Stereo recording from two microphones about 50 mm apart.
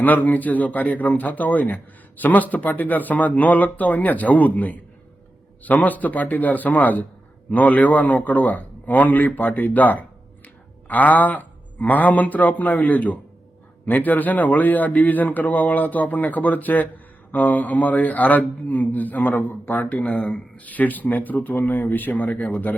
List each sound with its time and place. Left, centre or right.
0.0 s a man's voice: left
20.0 s a man's voice: left